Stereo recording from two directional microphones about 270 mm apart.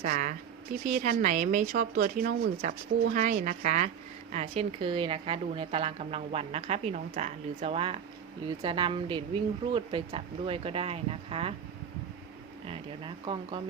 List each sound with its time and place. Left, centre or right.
0.0 s a woman's voice: right
12.6 s speech: centre